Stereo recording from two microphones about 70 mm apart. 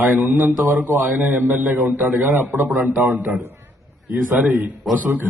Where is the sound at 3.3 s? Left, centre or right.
Right.